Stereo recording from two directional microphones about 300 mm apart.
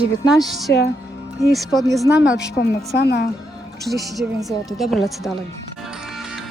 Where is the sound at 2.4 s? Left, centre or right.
Left.